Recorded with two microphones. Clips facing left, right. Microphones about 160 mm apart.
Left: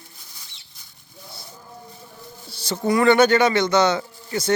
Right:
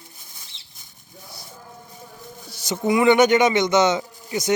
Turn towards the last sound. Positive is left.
turn(degrees=-15)  # may be behind; listen again after turning